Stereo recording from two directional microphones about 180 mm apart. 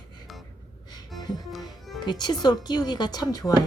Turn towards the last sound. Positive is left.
turn(degrees=20)  # may be behind; listen again after turning